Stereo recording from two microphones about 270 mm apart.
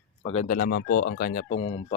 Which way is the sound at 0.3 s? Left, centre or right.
Left.